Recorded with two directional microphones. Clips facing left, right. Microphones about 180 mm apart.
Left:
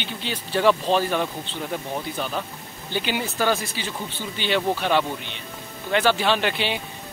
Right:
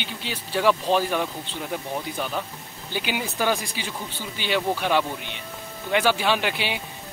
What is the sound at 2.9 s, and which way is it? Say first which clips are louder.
Speech: left 2 dB; 10° right (ahead or behind).